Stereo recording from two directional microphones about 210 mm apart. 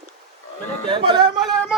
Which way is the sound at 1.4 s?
Centre (ahead or behind).